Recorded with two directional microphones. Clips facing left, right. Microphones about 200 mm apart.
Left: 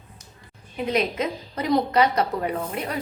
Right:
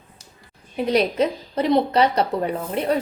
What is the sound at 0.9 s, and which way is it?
A woman's voice, 35° right (ahead or behind).